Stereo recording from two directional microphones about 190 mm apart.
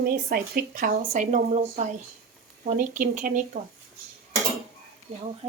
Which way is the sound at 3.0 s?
45° right (ahead or behind).